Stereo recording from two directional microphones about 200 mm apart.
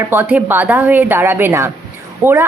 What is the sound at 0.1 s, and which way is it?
A woman's voice, 10° right (ahead or behind).